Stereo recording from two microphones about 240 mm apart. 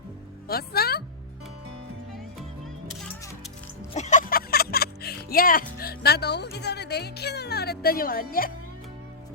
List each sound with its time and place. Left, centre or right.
0.4 s music: left
3.9 s music: left